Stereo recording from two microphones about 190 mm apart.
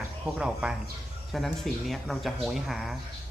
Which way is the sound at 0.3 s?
5° right (ahead or behind).